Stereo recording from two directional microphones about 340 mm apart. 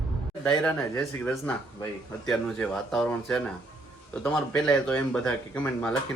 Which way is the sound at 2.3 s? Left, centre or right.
Centre.